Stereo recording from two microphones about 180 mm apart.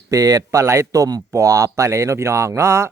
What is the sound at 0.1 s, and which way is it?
Speech, 20° right (ahead or behind).